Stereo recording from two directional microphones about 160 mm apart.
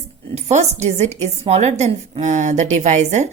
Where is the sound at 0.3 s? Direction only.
45° right (ahead or behind).